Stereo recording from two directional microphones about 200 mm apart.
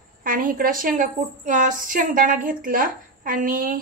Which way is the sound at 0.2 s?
45° right (ahead or behind).